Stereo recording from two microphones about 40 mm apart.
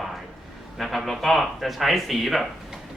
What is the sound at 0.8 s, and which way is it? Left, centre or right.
Speech, centre.